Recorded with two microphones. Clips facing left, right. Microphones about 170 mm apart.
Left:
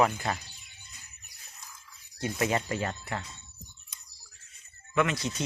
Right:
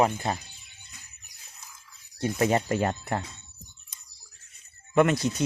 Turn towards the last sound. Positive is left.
turn(degrees=-45)  # may be behind; listen again after turning